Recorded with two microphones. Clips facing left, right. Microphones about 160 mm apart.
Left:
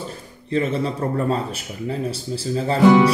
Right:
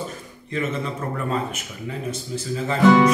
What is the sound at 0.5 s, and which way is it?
Speech, 30° left (ahead or behind).